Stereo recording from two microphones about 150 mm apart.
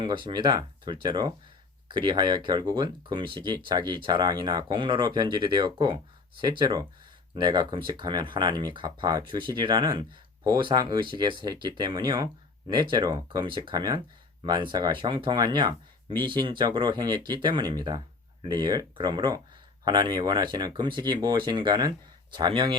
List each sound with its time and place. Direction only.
0.0 s speech: 30° right (ahead or behind)